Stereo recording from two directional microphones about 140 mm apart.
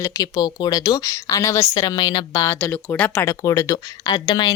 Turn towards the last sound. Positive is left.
turn(degrees=30)  # may be behind; listen again after turning